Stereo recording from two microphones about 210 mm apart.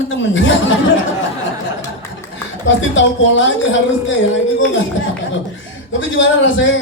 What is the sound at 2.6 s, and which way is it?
Speech, 60° left (ahead or behind).